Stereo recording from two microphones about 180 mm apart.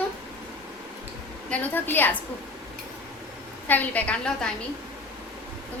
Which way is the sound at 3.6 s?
10° left (ahead or behind).